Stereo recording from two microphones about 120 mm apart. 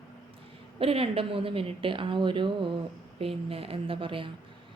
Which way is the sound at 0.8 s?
50° right (ahead or behind).